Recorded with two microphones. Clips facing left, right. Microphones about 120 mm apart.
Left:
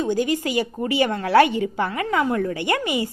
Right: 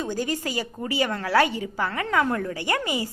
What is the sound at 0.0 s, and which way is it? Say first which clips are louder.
A woman's voice: left 6 dB; 15° left (ahead or behind).